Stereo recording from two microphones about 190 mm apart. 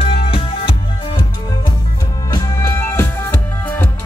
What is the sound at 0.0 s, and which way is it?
Music, 30° left (ahead or behind).